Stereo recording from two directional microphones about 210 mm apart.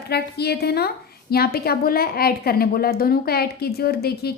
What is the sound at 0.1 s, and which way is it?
A woman's voice, 50° left (ahead or behind).